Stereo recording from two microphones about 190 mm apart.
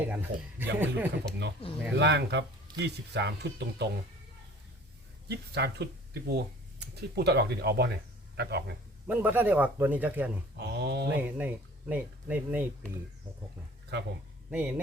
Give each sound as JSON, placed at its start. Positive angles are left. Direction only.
{"t": 0.1, "sound": "speech", "side_deg": -10}
{"t": 1.6, "sound": "speech", "side_deg": 30}
{"t": 2.0, "sound": "speech", "side_deg": -65}
{"t": 5.3, "sound": "speech", "side_deg": -60}
{"t": 9.0, "sound": "speech", "side_deg": -10}
{"t": 10.6, "sound": "speech", "side_deg": -60}
{"t": 11.2, "sound": "speech", "side_deg": -10}
{"t": 13.9, "sound": "speech", "side_deg": -65}
{"t": 14.5, "sound": "speech", "side_deg": -10}